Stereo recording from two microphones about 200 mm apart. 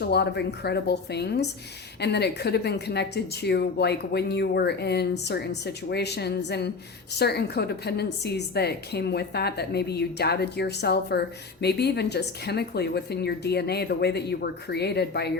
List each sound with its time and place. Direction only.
0.0 s speech: 55° left (ahead or behind)